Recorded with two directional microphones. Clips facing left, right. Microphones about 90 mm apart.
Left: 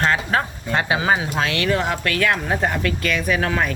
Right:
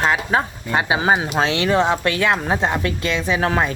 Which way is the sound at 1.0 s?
30° right (ahead or behind).